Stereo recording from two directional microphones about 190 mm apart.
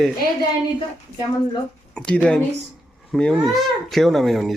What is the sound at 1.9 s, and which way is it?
Speech, 5° left (ahead or behind).